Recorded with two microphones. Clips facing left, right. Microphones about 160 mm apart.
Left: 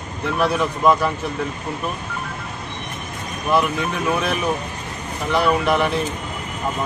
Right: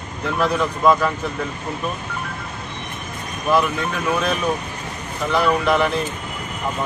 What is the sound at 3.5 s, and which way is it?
Speech, 15° left (ahead or behind).